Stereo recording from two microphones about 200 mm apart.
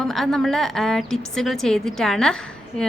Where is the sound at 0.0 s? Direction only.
Centre (ahead or behind).